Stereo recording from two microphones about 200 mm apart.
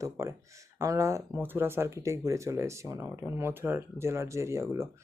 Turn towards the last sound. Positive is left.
turn(degrees=-15)  # may be behind; listen again after turning